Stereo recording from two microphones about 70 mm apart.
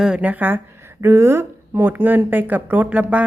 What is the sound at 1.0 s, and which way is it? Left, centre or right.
A woman's voice, right.